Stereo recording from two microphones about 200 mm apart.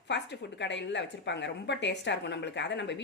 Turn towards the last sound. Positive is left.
turn(degrees=60)  # may be behind; listen again after turning